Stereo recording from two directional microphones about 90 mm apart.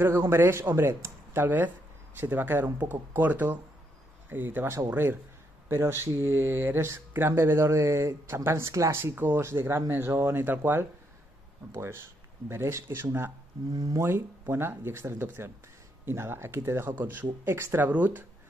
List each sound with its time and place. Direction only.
0.0 s speech: 25° right (ahead or behind)